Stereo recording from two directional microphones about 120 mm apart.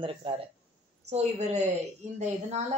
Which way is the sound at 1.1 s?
70° right (ahead or behind).